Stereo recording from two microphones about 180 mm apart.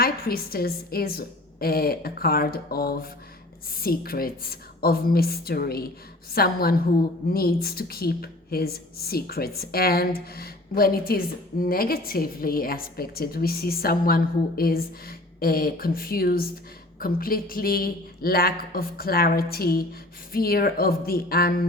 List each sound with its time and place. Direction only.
0.0 s speech: 55° left (ahead or behind)